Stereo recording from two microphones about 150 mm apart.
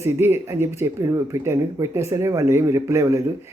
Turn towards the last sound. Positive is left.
turn(degrees=-20)  # may be behind; listen again after turning